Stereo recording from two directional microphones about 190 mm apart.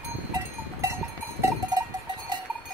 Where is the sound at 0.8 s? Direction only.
15° right (ahead or behind).